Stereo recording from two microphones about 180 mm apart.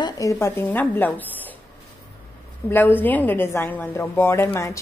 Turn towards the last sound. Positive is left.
turn(degrees=15)  # may be behind; listen again after turning